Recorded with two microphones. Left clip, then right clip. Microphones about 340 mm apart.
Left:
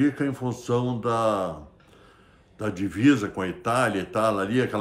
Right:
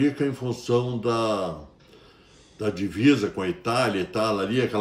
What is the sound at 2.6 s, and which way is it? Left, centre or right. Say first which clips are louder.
Speech: right 1 dB; centre.